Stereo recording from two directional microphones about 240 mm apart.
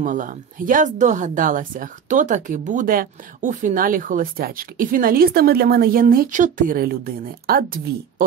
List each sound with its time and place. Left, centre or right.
0.0 s speech: right